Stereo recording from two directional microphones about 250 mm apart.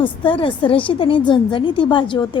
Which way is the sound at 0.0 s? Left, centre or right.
Centre.